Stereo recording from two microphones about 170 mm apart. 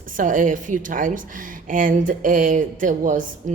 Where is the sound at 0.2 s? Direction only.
50° right (ahead or behind).